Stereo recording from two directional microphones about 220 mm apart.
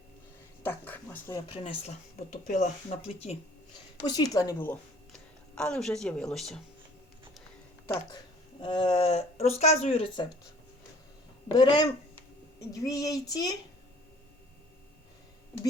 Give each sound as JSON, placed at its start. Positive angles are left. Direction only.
{"t": 0.6, "sound": "a sound", "side_deg": 10}
{"t": 1.5, "sound": "speech", "side_deg": 25}
{"t": 4.1, "sound": "a woman's voice", "side_deg": 15}
{"t": 8.6, "sound": "speech", "side_deg": 25}
{"t": 11.4, "sound": "speech", "side_deg": 20}
{"t": 12.7, "sound": "child singing", "side_deg": 15}